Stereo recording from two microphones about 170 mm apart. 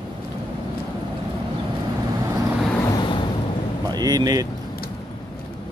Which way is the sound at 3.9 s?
20° right (ahead or behind).